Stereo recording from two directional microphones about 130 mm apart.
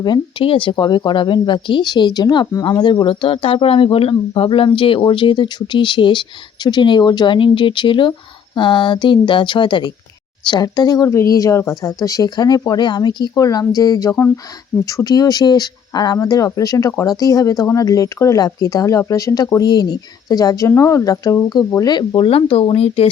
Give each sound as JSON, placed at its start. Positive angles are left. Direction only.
{"t": 0.0, "sound": "speech", "side_deg": 35}
{"t": 21.8, "sound": "speech", "side_deg": 35}